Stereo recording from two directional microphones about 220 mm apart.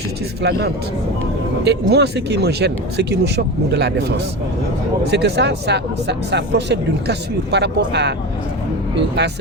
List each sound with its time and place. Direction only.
0.4 s speech: 50° right (ahead or behind)
5.1 s speech: 50° right (ahead or behind)